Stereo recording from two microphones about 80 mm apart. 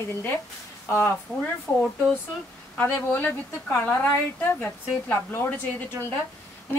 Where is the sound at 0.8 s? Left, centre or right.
Left.